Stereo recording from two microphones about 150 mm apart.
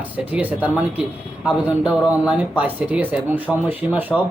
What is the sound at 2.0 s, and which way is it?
Speech, 10° right (ahead or behind).